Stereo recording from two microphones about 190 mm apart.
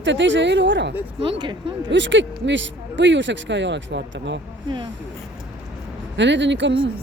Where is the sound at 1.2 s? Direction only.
25° right (ahead or behind).